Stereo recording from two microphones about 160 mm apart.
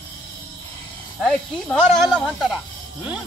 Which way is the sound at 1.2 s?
5° left (ahead or behind).